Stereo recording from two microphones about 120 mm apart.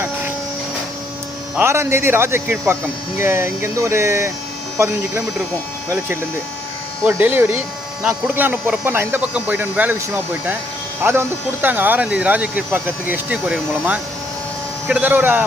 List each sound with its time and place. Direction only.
1.5 s speech: 20° right (ahead or behind)
7.0 s speech: 15° right (ahead or behind)